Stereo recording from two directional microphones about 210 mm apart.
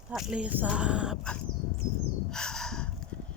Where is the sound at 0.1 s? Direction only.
Centre (ahead or behind).